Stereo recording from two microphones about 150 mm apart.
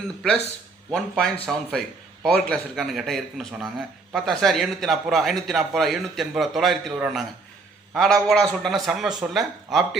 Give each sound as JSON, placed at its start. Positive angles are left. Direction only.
{"t": 0.9, "sound": "a man's voice", "side_deg": 5}